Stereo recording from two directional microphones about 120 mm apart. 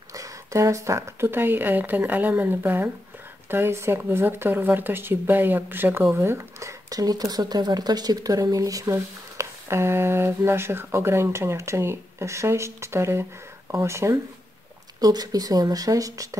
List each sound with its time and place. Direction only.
0.1 s speech: 25° right (ahead or behind)